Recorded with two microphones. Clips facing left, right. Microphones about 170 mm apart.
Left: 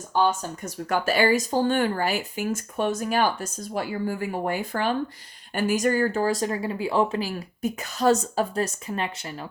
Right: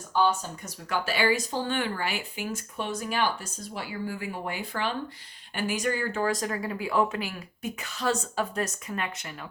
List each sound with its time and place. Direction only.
0.1 s speech: 45° left (ahead or behind); by 9.5 s 30° left (ahead or behind)